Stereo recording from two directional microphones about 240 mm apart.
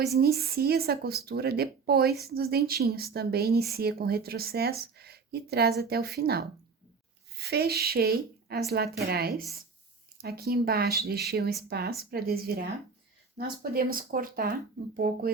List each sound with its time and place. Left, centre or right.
0.1 s a woman's voice: right